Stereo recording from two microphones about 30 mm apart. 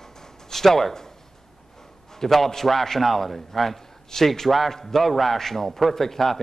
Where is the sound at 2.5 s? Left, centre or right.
Centre.